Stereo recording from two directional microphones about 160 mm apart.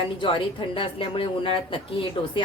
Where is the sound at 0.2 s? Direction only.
30° left (ahead or behind).